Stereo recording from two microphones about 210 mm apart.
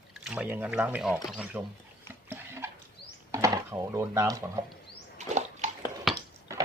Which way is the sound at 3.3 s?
15° right (ahead or behind).